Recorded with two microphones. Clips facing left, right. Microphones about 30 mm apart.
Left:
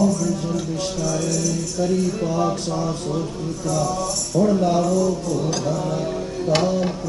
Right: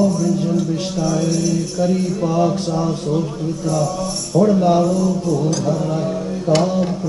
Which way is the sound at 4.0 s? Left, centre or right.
Centre.